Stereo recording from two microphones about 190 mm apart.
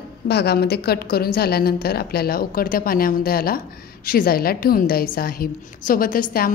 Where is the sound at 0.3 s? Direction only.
60° left (ahead or behind).